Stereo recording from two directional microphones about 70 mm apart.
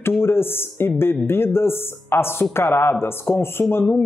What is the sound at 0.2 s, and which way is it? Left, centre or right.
Speech, left.